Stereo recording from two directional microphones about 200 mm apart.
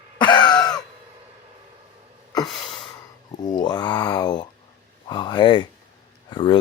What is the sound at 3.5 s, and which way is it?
Speech, 20° left (ahead or behind).